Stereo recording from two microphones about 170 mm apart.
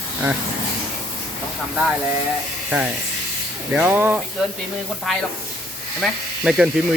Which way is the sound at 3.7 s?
10° right (ahead or behind).